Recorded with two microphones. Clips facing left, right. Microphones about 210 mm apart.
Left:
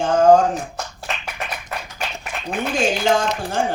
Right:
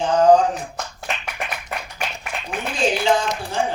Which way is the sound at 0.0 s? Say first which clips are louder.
Left 1 dB; 45° left (ahead or behind).